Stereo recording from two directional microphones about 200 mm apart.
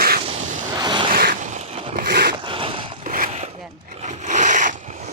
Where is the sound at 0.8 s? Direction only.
20° right (ahead or behind).